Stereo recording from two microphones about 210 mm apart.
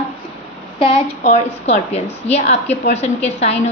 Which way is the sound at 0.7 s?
30° left (ahead or behind).